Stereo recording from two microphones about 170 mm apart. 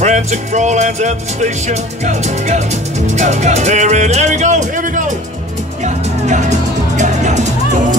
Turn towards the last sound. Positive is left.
turn(degrees=-45)  # may be behind; listen again after turning